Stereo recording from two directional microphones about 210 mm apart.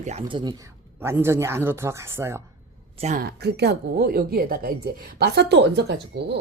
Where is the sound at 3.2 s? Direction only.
50° right (ahead or behind).